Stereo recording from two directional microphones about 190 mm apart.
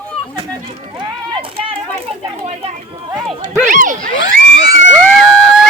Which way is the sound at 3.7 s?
45° right (ahead or behind).